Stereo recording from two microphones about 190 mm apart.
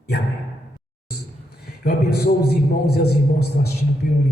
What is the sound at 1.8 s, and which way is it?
A man's voice, 55° left (ahead or behind).